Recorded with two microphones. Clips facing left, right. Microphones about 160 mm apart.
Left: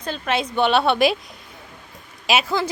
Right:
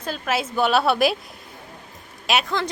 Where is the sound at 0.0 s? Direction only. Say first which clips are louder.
Left 1 dB; 5° right (ahead or behind).